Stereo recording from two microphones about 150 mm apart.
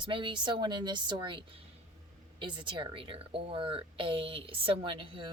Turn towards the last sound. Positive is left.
turn(degrees=-35)  # may be behind; listen again after turning